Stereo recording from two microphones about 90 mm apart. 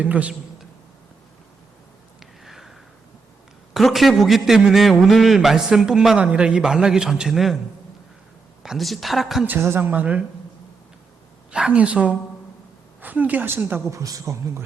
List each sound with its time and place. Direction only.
0.0 s a woman's voice: 15° right (ahead or behind)
2.4 s a sound: 5° right (ahead or behind)
3.8 s a man's voice: centre (ahead or behind)
8.6 s a man's voice: centre (ahead or behind)
9.5 s a woman's voice: 25° right (ahead or behind)
11.5 s a woman's voice: 10° right (ahead or behind)
13.9 s speech: 35° right (ahead or behind)